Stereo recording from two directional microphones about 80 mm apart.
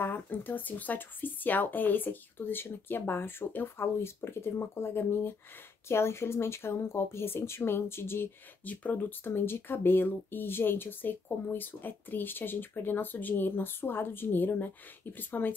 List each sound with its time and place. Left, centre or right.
0.0 s speech: left